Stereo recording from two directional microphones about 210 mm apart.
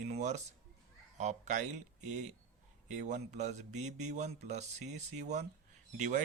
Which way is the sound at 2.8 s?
35° right (ahead or behind).